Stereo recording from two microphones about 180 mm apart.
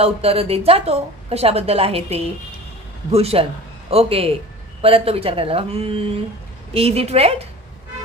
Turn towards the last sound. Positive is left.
turn(degrees=-35)  # may be behind; listen again after turning